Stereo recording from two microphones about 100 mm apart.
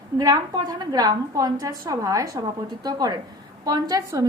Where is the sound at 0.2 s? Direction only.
40° right (ahead or behind).